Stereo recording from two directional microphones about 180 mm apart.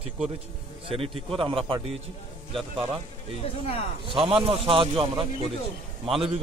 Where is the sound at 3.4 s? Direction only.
35° left (ahead or behind).